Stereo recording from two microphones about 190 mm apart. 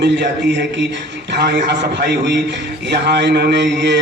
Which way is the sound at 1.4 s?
60° right (ahead or behind).